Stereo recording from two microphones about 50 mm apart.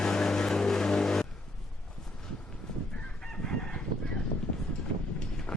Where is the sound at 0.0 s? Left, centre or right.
Centre.